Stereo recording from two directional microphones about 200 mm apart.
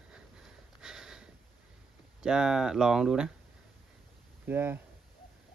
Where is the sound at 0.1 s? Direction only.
5° right (ahead or behind).